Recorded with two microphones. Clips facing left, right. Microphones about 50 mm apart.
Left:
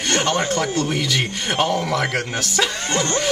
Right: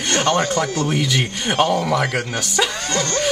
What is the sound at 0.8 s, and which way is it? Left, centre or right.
Speech, centre.